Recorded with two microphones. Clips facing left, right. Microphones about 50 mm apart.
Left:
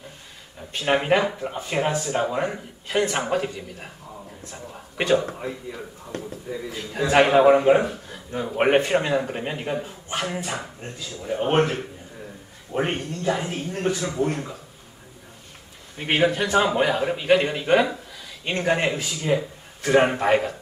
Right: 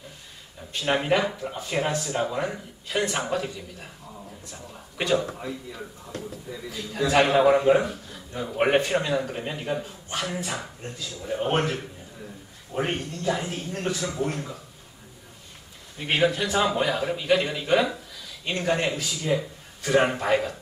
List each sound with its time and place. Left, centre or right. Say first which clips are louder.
0.7 s a man's voice: left 3 dB; left
5.4 s speech: left 3 dB; left
10.6 s speech: left 1 dB; centre
12.7 s speech: left 3 dB; left
16.3 s speech: left 4 dB; left